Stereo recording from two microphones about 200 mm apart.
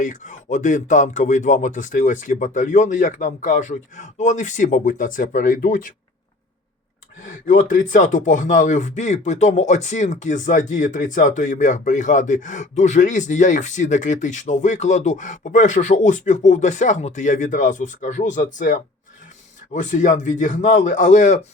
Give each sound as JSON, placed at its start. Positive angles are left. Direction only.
{"t": 0.0, "sound": "speech", "side_deg": 40}
{"t": 7.2, "sound": "speech", "side_deg": 40}